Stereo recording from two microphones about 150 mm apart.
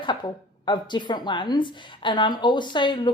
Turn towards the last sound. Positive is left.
turn(degrees=30)  # may be behind; listen again after turning